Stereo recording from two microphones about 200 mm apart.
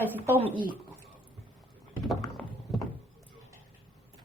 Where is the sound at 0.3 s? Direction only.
10° right (ahead or behind).